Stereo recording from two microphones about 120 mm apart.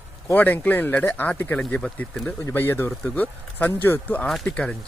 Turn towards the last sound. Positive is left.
turn(degrees=10)  # may be behind; listen again after turning